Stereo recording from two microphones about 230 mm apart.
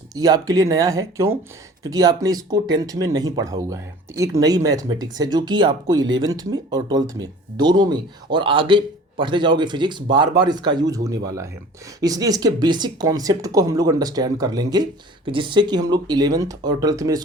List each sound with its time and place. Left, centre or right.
0.1 s speech: centre